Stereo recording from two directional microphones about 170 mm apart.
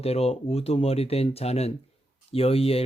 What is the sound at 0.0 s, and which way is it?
Speech, 35° left (ahead or behind).